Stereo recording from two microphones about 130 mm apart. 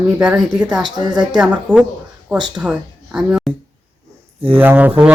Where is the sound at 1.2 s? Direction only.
5° right (ahead or behind).